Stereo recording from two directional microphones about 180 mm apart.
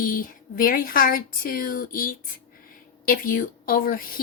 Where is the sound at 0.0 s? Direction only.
50° left (ahead or behind).